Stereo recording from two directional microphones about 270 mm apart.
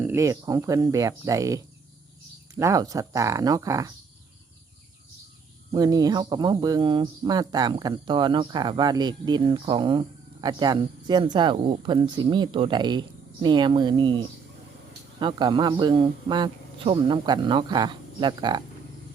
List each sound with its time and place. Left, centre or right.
0.0 s speech: centre
5.7 s speech: centre